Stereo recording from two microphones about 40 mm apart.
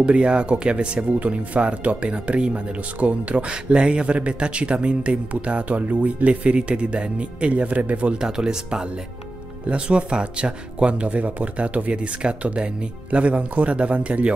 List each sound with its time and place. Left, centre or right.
0.0 s speech: right
8.2 s speech: centre